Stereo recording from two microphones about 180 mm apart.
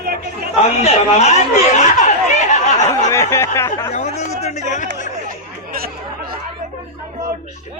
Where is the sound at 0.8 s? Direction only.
35° left (ahead or behind).